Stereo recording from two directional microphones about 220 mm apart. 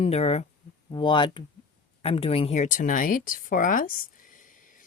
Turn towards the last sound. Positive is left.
turn(degrees=35)  # may be behind; listen again after turning